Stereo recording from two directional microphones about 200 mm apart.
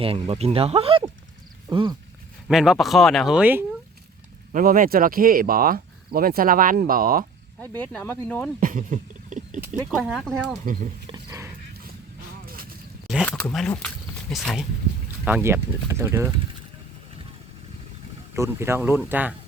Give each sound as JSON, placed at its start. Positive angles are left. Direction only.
{"t": 0.0, "sound": "speech", "side_deg": -30}
{"t": 2.5, "sound": "speech", "side_deg": 0}
{"t": 4.5, "sound": "speech", "side_deg": -45}
{"t": 7.8, "sound": "speech", "side_deg": 10}
{"t": 8.6, "sound": "a sound", "side_deg": -40}
{"t": 9.6, "sound": "speech", "side_deg": -5}
{"t": 11.1, "sound": "horse", "side_deg": -15}
{"t": 13.2, "sound": "speech", "side_deg": 5}
{"t": 18.3, "sound": "speech", "side_deg": -15}